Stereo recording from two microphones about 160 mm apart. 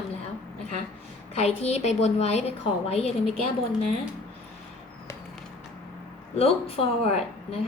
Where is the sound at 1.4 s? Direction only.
40° left (ahead or behind).